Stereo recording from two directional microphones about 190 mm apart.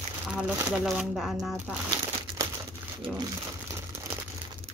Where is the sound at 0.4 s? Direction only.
5° right (ahead or behind).